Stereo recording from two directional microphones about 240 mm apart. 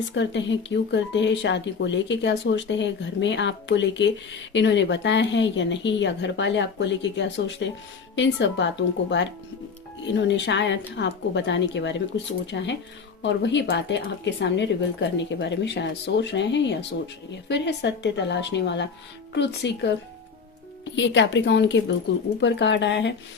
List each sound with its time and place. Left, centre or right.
0.1 s speech: left
20.9 s speech: left